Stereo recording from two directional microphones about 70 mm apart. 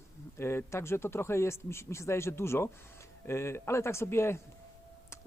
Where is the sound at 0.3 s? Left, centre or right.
Left.